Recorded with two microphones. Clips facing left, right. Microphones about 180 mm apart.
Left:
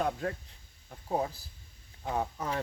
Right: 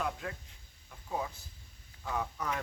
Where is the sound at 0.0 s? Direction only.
40° left (ahead or behind).